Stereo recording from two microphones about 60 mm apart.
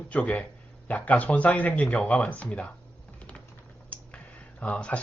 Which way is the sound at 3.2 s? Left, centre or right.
Left.